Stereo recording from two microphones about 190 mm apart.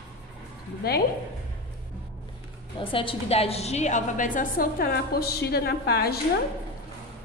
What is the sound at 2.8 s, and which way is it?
A woman's voice, 25° left (ahead or behind).